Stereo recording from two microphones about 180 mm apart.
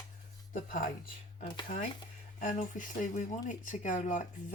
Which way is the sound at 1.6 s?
50° left (ahead or behind).